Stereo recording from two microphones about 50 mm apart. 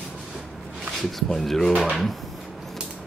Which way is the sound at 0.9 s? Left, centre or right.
Centre.